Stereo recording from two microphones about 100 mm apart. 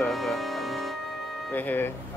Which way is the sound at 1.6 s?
20° left (ahead or behind).